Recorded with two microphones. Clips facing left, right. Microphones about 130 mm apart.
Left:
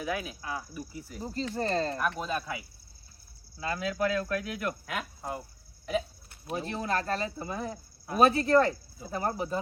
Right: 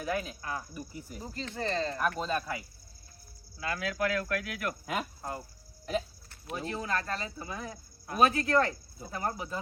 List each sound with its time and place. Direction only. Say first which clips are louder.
0.0 s speech: even; 5° left (ahead or behind)
1.2 s speech: left 4 dB; 35° left (ahead or behind)
2.0 s speech: even; 5° left (ahead or behind)
3.6 s speech: left 2 dB; 25° left (ahead or behind)
4.7 s speech: right 2 dB; centre (ahead or behind)
5.4 s hiccup: left 1 dB; centre (ahead or behind)
6.7 s speech: left 2 dB; 30° left (ahead or behind)